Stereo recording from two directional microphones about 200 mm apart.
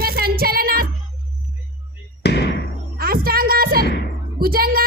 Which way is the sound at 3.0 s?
50° right (ahead or behind).